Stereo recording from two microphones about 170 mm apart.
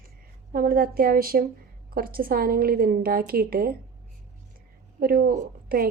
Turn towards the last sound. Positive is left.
turn(degrees=-60)  # may be behind; listen again after turning